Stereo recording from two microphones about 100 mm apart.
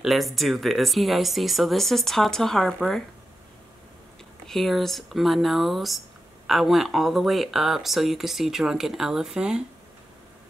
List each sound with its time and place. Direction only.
0.0 s speech: centre (ahead or behind)
4.5 s speech: centre (ahead or behind)